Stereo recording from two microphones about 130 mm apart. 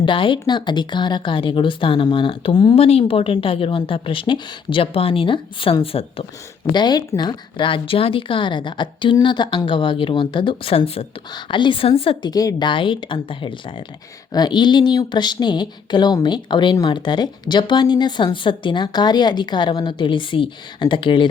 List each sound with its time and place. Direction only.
0.0 s a woman's voice: 40° left (ahead or behind)
6.7 s speech: 35° left (ahead or behind)
11.4 s a woman's voice: 40° left (ahead or behind)
12.3 s speech: 30° left (ahead or behind)